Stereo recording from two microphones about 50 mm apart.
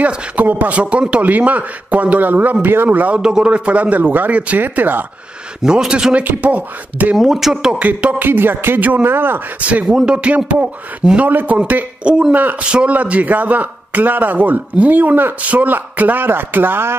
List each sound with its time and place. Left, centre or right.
0.0 s a man's voice: right
3.2 s a man's voice: centre
4.6 s a man's voice: right
5.6 s a man's voice: centre
6.1 s a man's voice: right
7.2 s speech: centre
7.8 s a man's voice: right
8.2 s music: right
9.0 s music: right
9.6 s a man's voice: right
12.4 s a man's voice: right
12.6 s a man's voice: right
12.9 s a man's voice: right